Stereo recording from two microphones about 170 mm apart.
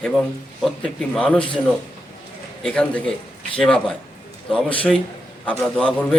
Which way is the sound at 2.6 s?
5° left (ahead or behind).